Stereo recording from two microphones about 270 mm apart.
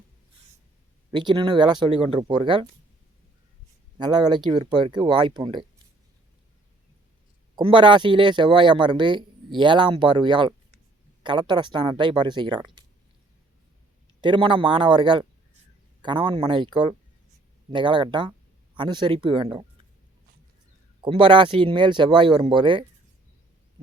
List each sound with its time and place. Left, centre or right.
1.1 s speech: centre
3.9 s speech: centre
7.5 s speech: centre
14.2 s speech: centre
21.0 s speech: centre